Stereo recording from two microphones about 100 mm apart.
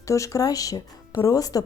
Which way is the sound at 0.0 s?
30° left (ahead or behind).